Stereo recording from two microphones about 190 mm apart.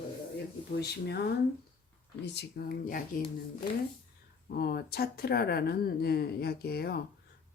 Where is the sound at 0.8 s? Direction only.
60° left (ahead or behind).